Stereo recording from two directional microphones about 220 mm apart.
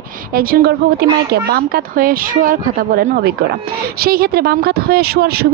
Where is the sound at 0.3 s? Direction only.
40° right (ahead or behind).